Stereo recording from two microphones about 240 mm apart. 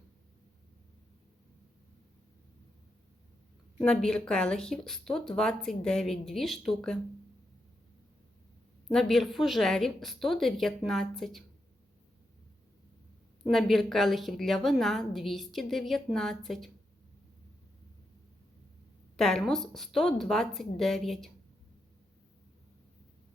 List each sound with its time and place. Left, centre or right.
3.8 s a woman's voice: centre
8.9 s a woman's voice: centre
13.4 s a woman's voice: centre
19.1 s a woman's voice: centre